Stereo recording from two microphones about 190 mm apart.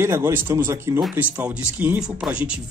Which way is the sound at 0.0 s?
10° right (ahead or behind).